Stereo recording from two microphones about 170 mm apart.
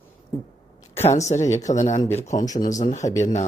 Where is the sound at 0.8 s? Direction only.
15° left (ahead or behind).